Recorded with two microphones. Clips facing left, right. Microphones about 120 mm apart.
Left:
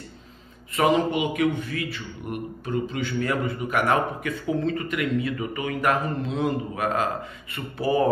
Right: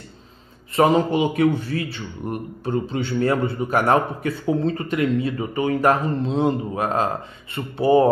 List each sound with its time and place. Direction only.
0.7 s a man's voice: 30° right (ahead or behind)